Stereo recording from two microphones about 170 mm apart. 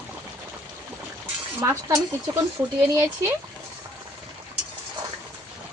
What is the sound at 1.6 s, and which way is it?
Speech, 20° right (ahead or behind).